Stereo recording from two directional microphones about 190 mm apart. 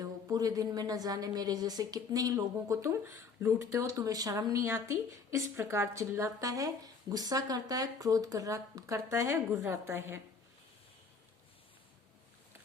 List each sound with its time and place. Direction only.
0.0 s a woman's voice: 20° right (ahead or behind)